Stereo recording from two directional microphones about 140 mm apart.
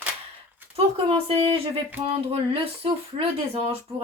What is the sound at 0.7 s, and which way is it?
Speech, 45° right (ahead or behind).